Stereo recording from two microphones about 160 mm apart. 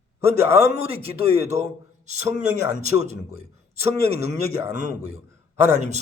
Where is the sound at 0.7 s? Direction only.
40° right (ahead or behind).